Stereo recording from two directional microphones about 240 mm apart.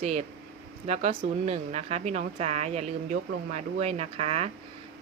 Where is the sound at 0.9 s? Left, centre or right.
Right.